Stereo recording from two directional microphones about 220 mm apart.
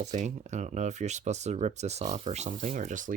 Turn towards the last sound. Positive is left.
turn(degrees=-35)  # may be behind; listen again after turning